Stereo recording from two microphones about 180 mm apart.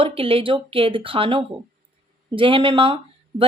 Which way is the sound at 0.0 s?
30° right (ahead or behind).